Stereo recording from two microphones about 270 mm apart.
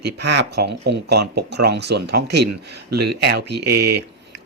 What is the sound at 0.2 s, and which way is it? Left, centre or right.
Speech, right.